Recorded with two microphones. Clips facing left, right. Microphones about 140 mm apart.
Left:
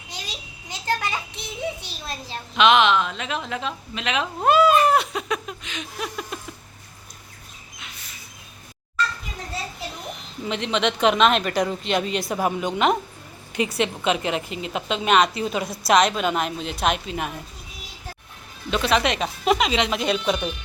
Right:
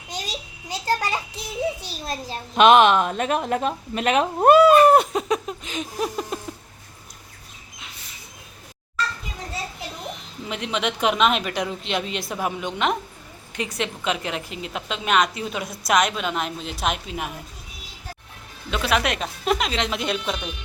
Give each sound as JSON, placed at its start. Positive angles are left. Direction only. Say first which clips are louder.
{"t": 0.1, "sound": "a child's voice", "louder": "right 5 dB", "side_deg": -40}
{"t": 10.5, "sound": "a woman's voice", "louder": "left 3 dB", "side_deg": -10}
{"t": 18.7, "sound": "a woman's voice", "louder": "left 2 dB", "side_deg": -5}